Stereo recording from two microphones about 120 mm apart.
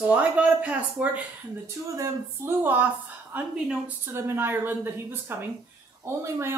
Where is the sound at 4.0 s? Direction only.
20° right (ahead or behind).